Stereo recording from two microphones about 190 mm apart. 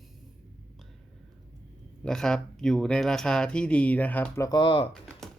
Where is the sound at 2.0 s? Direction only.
5° left (ahead or behind).